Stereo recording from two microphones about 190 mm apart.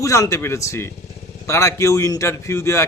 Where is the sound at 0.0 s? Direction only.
15° left (ahead or behind).